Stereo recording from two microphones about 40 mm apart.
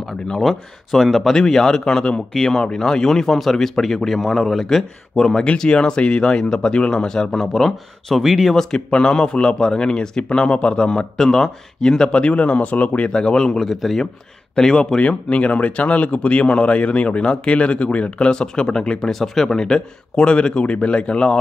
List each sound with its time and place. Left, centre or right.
0.3 s speech: centre
8.5 s speech: centre
11.1 s speech: centre; by 13.1 s left
13.1 s speech: centre
15.0 s speech: left